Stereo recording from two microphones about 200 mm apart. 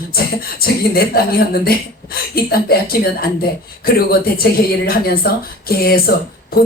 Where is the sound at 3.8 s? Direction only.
50° left (ahead or behind).